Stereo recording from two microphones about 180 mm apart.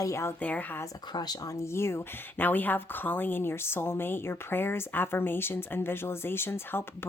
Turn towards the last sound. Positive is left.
turn(degrees=10)  # may be behind; listen again after turning